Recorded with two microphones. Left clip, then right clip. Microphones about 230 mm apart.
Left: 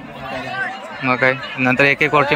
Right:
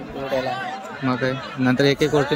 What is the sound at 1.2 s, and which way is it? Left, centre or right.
Speech, left.